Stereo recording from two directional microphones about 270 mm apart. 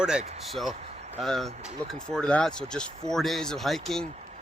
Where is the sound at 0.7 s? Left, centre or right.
Right.